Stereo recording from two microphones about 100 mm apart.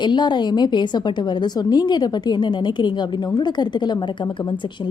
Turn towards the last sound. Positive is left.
turn(degrees=50)  # may be behind; listen again after turning